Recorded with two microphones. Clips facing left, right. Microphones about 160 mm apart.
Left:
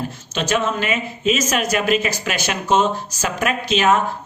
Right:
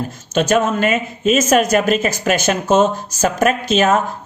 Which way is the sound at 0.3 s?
50° right (ahead or behind).